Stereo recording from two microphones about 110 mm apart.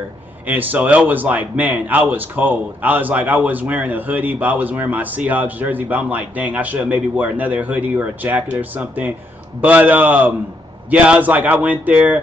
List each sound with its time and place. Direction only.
0.5 s a man's voice: 15° right (ahead or behind)